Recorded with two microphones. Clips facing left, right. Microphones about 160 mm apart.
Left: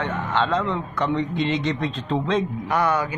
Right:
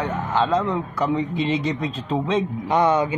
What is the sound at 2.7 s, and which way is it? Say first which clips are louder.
Speech: right 4 dB; 20° right (ahead or behind).